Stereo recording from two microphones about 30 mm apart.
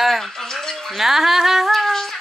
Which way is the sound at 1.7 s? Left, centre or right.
Centre.